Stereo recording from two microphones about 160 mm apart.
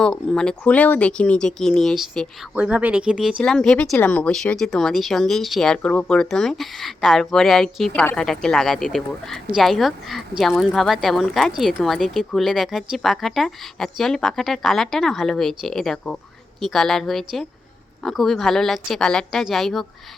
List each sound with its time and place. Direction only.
0.0 s speech: 5° left (ahead or behind)
2.6 s speech: 10° right (ahead or behind)